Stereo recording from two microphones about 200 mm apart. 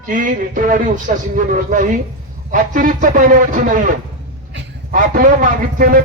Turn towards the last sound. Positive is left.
turn(degrees=-45)  # may be behind; listen again after turning